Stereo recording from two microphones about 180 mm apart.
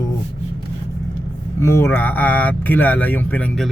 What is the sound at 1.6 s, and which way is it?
Speech, 15° left (ahead or behind).